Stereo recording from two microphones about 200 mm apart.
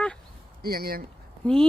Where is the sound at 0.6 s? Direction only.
50° right (ahead or behind).